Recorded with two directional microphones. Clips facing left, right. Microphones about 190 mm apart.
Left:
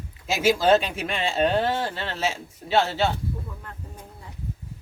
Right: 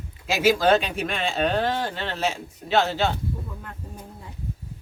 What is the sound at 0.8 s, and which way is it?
Speech, 5° left (ahead or behind).